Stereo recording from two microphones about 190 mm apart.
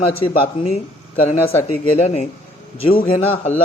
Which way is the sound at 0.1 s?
30° left (ahead or behind).